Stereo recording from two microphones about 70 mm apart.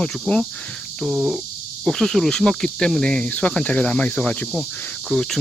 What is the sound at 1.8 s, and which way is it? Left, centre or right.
Speech, centre.